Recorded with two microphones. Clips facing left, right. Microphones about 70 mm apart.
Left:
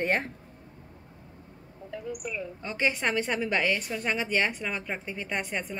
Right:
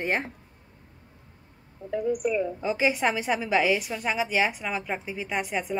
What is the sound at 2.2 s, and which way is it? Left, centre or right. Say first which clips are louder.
Speech: right 10 dB; right.